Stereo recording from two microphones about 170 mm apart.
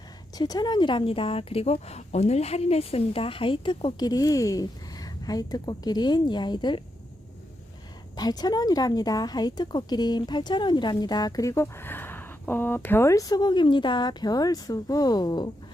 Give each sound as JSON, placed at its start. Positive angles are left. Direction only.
{"t": 0.3, "sound": "speech", "side_deg": 25}
{"t": 8.1, "sound": "speech", "side_deg": 25}